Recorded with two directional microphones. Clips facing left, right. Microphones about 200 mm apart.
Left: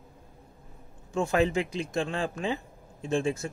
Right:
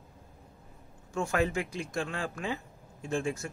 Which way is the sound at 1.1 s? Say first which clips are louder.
Left 4 dB; 20° left (ahead or behind).